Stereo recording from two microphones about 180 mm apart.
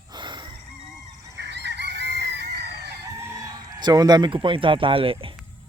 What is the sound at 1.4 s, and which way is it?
Fowl, 75° right (ahead or behind).